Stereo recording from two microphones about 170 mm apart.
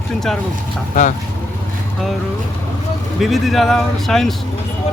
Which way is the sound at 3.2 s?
Centre (ahead or behind).